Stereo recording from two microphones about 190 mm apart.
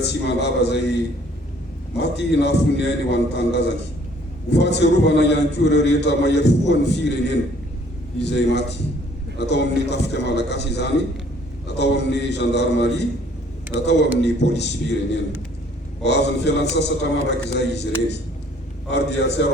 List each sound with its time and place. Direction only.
0.0 s a man's voice: 65° left (ahead or behind)
2.0 s a man's voice: 65° left (ahead or behind)
18.9 s a man's voice: 65° left (ahead or behind)